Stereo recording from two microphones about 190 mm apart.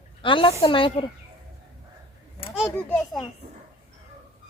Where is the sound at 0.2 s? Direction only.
25° left (ahead or behind).